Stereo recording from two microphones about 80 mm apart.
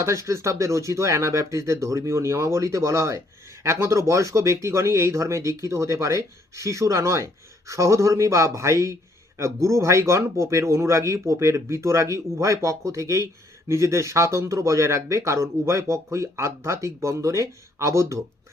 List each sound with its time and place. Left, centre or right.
0.0 s speech: right